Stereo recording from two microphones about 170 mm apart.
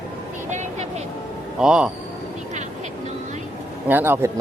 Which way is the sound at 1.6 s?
5° right (ahead or behind).